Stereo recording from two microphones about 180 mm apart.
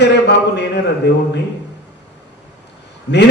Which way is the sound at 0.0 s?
70° left (ahead or behind).